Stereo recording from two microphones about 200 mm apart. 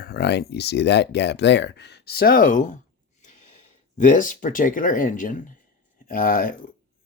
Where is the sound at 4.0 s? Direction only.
40° left (ahead or behind).